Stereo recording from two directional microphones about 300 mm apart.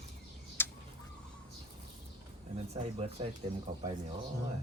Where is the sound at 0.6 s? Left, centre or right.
Centre.